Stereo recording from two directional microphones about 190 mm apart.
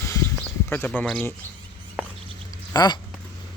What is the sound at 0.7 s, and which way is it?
Speech, 10° left (ahead or behind).